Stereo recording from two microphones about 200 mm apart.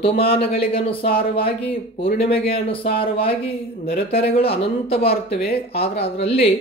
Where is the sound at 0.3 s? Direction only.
30° left (ahead or behind).